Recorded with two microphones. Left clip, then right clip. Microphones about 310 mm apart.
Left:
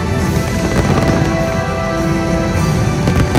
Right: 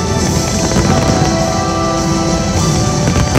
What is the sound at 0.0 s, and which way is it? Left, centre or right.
Music, right.